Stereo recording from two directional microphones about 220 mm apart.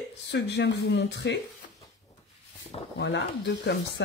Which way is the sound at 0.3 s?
50° left (ahead or behind).